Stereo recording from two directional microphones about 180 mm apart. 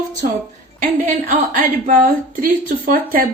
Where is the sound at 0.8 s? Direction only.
45° right (ahead or behind).